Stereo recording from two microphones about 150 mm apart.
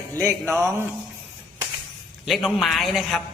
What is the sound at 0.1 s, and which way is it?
Music, 20° right (ahead or behind).